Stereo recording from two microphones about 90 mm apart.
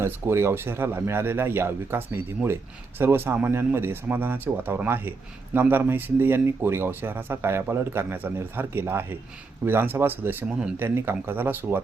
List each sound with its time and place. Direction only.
0.0 s speech: 30° right (ahead or behind)